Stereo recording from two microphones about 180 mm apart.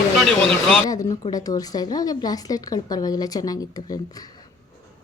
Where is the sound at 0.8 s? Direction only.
20° left (ahead or behind).